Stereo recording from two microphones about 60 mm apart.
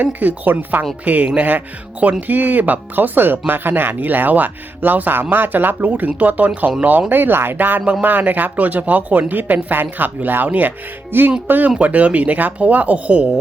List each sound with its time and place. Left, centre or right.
0.0 s speech: right
7.1 s speech: right